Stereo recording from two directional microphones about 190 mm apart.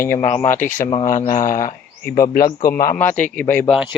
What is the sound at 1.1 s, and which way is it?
Speech, 45° left (ahead or behind).